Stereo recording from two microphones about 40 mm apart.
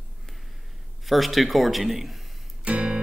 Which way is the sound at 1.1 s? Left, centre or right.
Centre.